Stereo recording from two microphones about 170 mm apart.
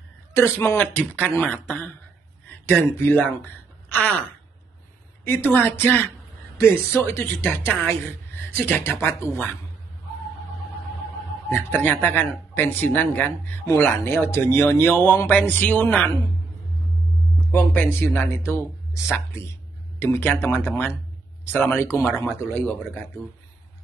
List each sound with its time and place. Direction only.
0.3 s speech: 15° left (ahead or behind)
5.2 s speech: 15° left (ahead or behind)
11.4 s speech: 10° left (ahead or behind)
17.5 s speech: 10° left (ahead or behind)